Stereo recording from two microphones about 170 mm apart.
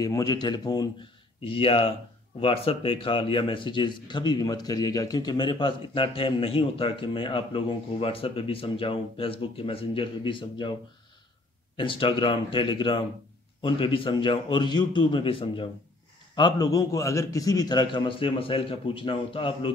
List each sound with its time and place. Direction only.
0.0 s a man's voice: 20° left (ahead or behind)
11.7 s a man's voice: 30° left (ahead or behind)